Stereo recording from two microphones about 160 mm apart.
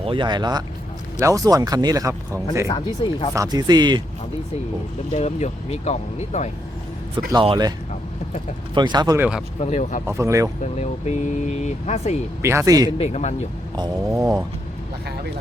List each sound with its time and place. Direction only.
0.0 s speech: 30° right (ahead or behind)
2.6 s speech: 30° left (ahead or behind)
3.3 s speech: 20° right (ahead or behind)
5.1 s speech: 45° left (ahead or behind)
7.4 s speech: 30° right (ahead or behind)
8.7 s speech: 30° right (ahead or behind)
9.1 s speech: 10° right (ahead or behind)
9.6 s speech: 45° left (ahead or behind)
10.1 s speech: 20° right (ahead or behind)
10.6 s speech: 45° left (ahead or behind)
12.4 s speech: 15° right (ahead or behind)
13.0 s speech: 45° left (ahead or behind)
13.7 s speech: 25° right (ahead or behind)